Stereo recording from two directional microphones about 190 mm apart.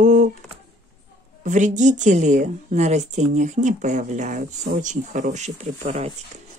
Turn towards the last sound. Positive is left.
turn(degrees=-35)  # may be behind; listen again after turning